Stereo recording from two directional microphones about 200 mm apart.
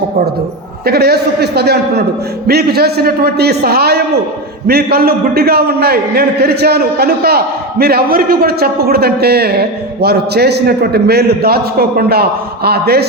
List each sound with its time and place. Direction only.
0.9 s a man's voice: 55° right (ahead or behind)